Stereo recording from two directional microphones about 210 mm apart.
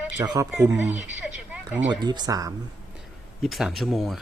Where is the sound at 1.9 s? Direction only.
20° right (ahead or behind).